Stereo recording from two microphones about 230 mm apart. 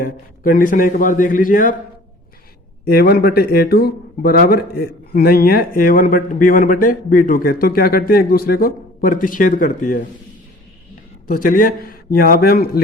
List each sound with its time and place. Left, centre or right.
0.0 s speech: left
2.8 s speech: left
11.3 s speech: left